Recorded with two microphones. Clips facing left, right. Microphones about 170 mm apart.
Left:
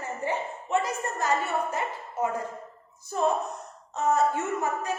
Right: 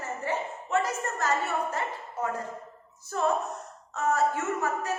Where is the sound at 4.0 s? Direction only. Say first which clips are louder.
Left 2 dB; 15° left (ahead or behind).